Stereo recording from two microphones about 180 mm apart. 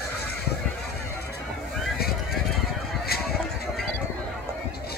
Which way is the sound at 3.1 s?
60° left (ahead or behind).